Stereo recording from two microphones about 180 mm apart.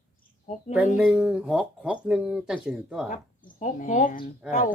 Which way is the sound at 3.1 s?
45° left (ahead or behind).